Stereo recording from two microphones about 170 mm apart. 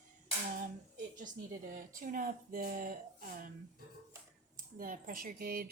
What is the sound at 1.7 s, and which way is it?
Speech, 55° right (ahead or behind).